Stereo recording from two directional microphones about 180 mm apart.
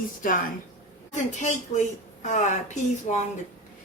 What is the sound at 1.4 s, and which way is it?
Speech, 40° left (ahead or behind).